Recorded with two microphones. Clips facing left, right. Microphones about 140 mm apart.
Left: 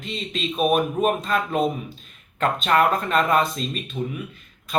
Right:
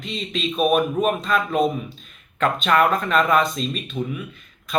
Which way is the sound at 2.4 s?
30° left (ahead or behind).